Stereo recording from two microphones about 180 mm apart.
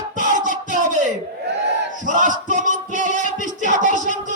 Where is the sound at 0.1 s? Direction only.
45° right (ahead or behind).